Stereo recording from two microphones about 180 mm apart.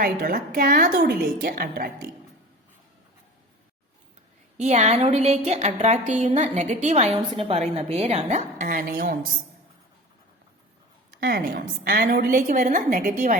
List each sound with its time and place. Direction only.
0.0 s a woman's voice: 55° right (ahead or behind)
4.5 s a woman's voice: 40° right (ahead or behind)
11.2 s a woman's voice: 60° right (ahead or behind)